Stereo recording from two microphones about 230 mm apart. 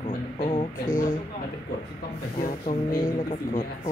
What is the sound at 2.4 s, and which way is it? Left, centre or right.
Speech, left.